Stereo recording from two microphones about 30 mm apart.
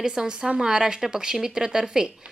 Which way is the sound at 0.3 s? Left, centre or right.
Right.